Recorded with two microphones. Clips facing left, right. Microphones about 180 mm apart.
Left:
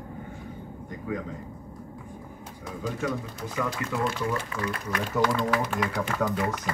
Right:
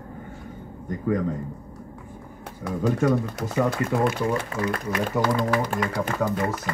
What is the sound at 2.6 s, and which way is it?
Speech, 65° right (ahead or behind).